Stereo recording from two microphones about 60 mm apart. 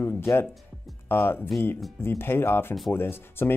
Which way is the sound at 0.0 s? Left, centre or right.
Left.